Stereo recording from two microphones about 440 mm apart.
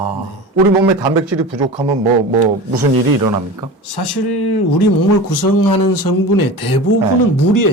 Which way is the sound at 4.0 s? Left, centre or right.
Left.